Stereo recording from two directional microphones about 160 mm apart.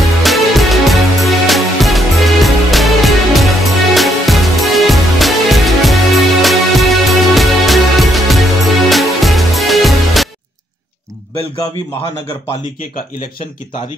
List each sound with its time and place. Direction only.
0.2 s music: centre (ahead or behind)